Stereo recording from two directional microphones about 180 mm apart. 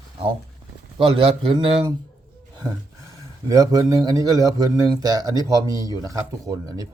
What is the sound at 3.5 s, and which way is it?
Speech, 20° right (ahead or behind).